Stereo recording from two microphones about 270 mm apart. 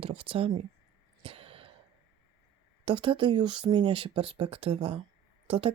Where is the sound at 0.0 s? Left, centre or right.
Centre.